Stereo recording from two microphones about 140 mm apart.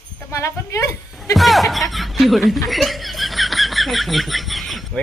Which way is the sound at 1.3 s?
Centre (ahead or behind).